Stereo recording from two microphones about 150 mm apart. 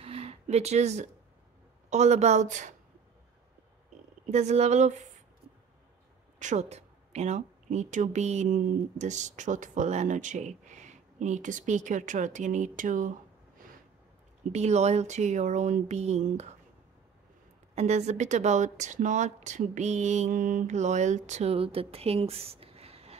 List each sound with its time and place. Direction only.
0.0 s a sound: 40° right (ahead or behind)
1.9 s speech: 50° right (ahead or behind)
4.3 s speech: 50° right (ahead or behind)
6.4 s a woman's voice: 50° right (ahead or behind)
14.5 s speech: 50° right (ahead or behind)
17.7 s speech: 45° right (ahead or behind)